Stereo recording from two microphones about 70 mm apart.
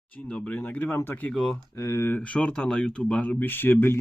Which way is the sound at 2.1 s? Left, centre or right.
Centre.